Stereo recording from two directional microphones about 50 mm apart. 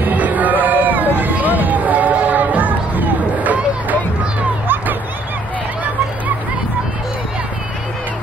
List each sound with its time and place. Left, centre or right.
0.0 s music: right